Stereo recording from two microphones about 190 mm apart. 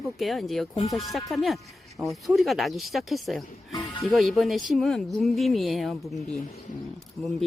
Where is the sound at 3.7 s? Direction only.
25° left (ahead or behind).